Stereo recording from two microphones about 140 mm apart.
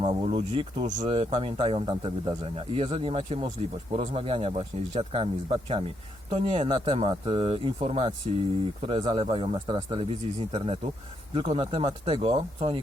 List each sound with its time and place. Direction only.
0.0 s speech: 40° right (ahead or behind)